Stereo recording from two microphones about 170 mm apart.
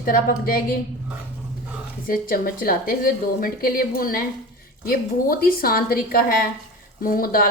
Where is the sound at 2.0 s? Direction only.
55° left (ahead or behind).